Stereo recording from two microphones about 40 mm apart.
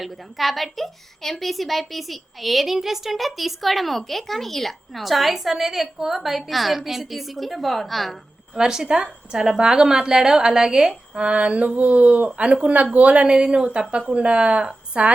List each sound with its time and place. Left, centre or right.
0.0 s a woman's voice: centre
8.5 s a woman's voice: centre
11.2 s speech: right
11.7 s speech: right
12.7 s speech: right
13.3 s speech: right